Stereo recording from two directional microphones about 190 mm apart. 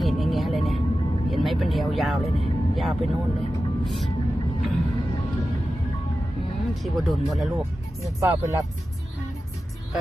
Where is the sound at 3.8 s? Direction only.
Centre (ahead or behind).